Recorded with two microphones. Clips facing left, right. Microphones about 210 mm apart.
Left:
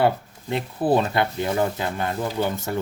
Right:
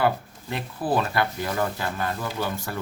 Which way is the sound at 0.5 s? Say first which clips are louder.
Left 5 dB; 25° left (ahead or behind).